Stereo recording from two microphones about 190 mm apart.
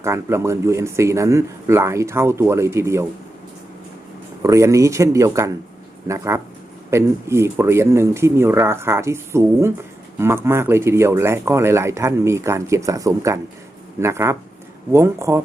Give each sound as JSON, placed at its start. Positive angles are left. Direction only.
{"t": 0.0, "sound": "speech", "side_deg": -15}
{"t": 4.4, "sound": "speech", "side_deg": -15}